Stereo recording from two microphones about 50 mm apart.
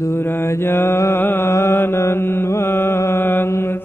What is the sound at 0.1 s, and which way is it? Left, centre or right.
Mantra, left.